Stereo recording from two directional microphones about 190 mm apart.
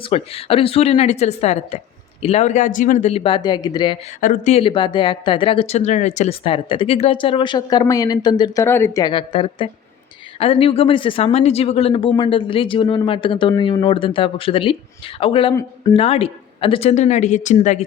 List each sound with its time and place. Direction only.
0.1 s a woman's voice: 30° left (ahead or behind)
4.2 s a woman's voice: 40° left (ahead or behind)